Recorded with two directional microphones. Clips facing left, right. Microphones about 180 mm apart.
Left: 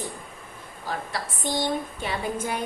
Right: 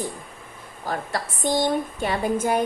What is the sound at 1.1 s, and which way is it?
A woman's voice, 45° right (ahead or behind).